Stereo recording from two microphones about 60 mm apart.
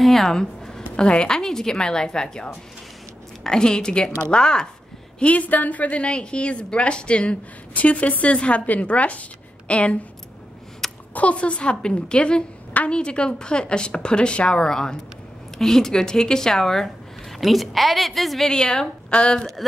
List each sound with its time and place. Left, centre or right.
0.0 s a woman's voice: centre
5.2 s a woman's voice: left
10.8 s a sound: centre
11.1 s a woman's voice: left